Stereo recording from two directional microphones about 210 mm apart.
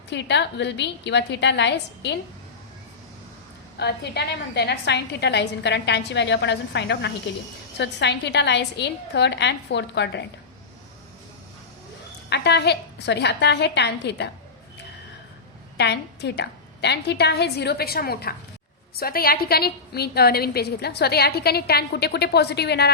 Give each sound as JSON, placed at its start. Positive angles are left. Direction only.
{"t": 0.1, "sound": "a woman's voice", "side_deg": 55}
{"t": 3.8, "sound": "a woman's voice", "side_deg": 50}
{"t": 12.3, "sound": "a woman's voice", "side_deg": 55}
{"t": 15.8, "sound": "a woman's voice", "side_deg": 55}